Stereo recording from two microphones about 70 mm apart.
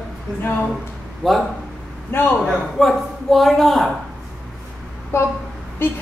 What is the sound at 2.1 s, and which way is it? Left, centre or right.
Speech, left.